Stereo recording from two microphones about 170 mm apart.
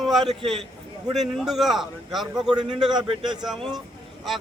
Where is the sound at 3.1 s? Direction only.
25° right (ahead or behind).